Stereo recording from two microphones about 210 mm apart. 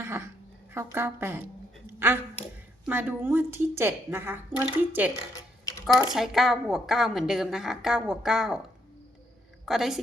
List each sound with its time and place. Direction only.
0.0 s a sound: 10° right (ahead or behind)
0.7 s a woman's voice: 10° right (ahead or behind)
9.6 s a woman's voice: centre (ahead or behind)